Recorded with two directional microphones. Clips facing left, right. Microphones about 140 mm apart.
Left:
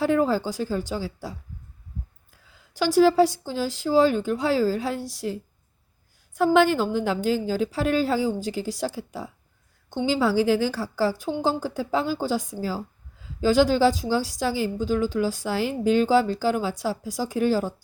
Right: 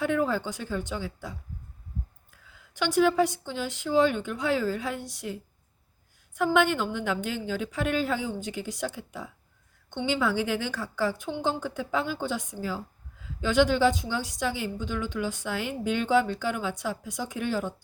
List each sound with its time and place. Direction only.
0.0 s a woman's voice: 35° left (ahead or behind)
2.7 s a woman's voice: 35° left (ahead or behind)